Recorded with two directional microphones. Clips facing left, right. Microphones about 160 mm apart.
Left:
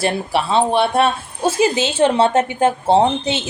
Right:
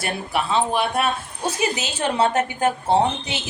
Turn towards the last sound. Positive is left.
turn(degrees=25)  # may be behind; listen again after turning